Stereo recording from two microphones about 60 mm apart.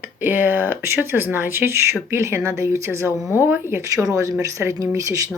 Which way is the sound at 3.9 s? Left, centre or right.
Right.